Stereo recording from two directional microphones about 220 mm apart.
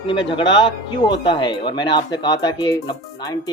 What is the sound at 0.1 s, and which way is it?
Speech, 20° left (ahead or behind).